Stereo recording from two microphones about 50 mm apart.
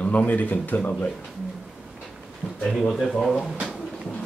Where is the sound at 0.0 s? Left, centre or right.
Left.